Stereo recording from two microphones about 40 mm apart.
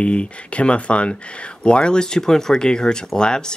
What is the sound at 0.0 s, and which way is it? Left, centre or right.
Speech, left.